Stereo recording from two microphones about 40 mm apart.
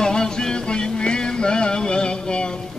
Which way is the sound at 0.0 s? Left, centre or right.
Centre.